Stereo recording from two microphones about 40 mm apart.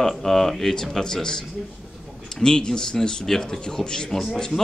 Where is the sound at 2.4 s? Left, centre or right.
Centre.